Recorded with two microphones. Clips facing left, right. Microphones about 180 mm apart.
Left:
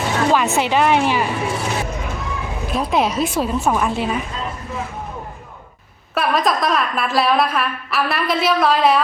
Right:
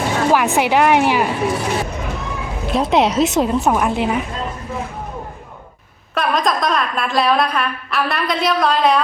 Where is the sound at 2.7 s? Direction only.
25° right (ahead or behind).